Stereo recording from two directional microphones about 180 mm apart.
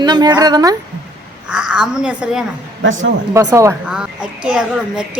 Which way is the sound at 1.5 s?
5° right (ahead or behind).